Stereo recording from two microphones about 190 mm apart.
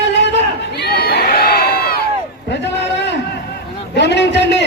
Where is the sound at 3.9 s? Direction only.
65° left (ahead or behind).